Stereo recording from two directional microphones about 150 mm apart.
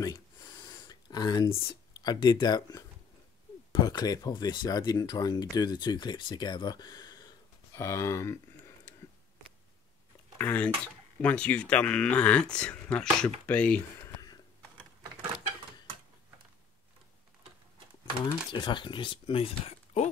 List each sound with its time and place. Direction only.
0.0 s a sound: 25° left (ahead or behind)
1.5 s speech: 25° left (ahead or behind)
10.3 s speech: 15° left (ahead or behind)
18.5 s speech: 30° left (ahead or behind)